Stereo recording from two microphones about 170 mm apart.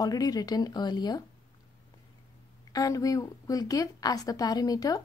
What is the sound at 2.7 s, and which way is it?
A woman's voice, 20° left (ahead or behind).